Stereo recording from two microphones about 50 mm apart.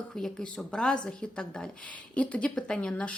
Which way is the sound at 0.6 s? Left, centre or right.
Centre.